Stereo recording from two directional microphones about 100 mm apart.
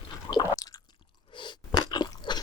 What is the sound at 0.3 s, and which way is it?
Squish, 40° left (ahead or behind).